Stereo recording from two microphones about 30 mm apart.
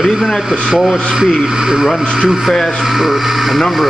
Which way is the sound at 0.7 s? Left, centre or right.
Centre.